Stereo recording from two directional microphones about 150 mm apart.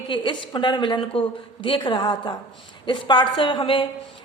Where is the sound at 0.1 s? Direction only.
35° left (ahead or behind).